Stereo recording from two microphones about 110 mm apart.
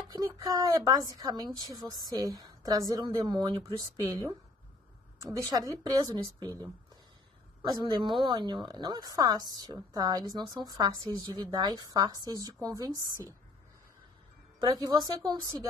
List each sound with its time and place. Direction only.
0.1 s a woman's voice: 35° right (ahead or behind)
14.6 s a woman's voice: 35° right (ahead or behind)